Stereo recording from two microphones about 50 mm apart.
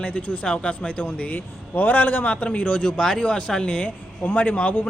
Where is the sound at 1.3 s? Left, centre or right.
Left.